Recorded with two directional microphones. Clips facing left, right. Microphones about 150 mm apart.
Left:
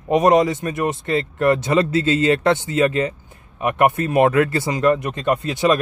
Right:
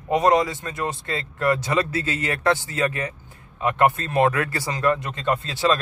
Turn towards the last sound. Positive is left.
turn(degrees=20)  # may be behind; listen again after turning